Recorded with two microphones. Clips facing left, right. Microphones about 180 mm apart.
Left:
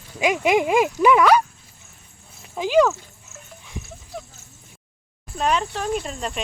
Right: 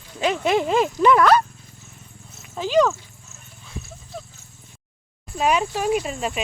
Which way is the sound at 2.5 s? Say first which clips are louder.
Left 1 dB; 10° left (ahead or behind).